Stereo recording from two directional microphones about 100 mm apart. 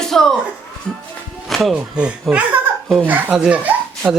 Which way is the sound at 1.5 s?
Centre (ahead or behind).